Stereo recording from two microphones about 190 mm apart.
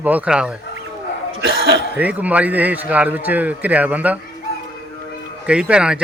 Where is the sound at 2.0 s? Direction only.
10° right (ahead or behind).